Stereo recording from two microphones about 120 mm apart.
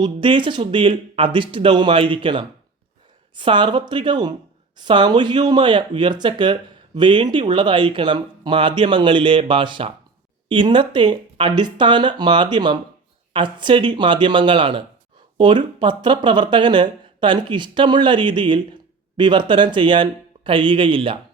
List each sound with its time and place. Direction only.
0.0 s speech: 45° right (ahead or behind)